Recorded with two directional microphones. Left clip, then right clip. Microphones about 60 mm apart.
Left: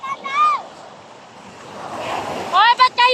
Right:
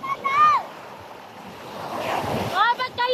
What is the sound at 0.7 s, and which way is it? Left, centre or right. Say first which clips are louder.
Waves: even; centre.